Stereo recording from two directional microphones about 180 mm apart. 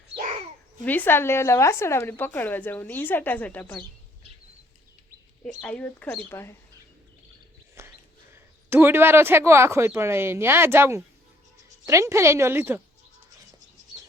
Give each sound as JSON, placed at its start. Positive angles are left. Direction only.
{"t": 0.2, "sound": "babbling", "side_deg": -40}
{"t": 0.9, "sound": "speech", "side_deg": 10}
{"t": 5.4, "sound": "speech", "side_deg": 5}
{"t": 7.8, "sound": "a sound", "side_deg": -15}
{"t": 8.7, "sound": "speech", "side_deg": -10}